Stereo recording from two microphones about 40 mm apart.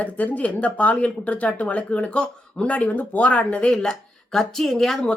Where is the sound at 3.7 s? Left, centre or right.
Centre.